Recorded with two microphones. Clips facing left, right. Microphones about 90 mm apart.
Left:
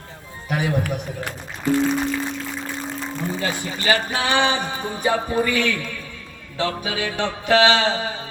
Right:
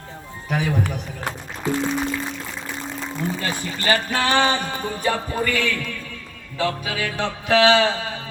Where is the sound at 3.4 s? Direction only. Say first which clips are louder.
Left 1 dB; 15° left (ahead or behind).